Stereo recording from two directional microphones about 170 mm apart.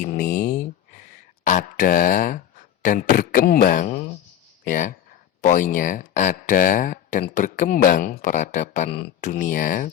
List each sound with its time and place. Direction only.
0.0 s a sound: 55° left (ahead or behind)
1.5 s speech: 50° left (ahead or behind)
9.3 s speech: 50° left (ahead or behind)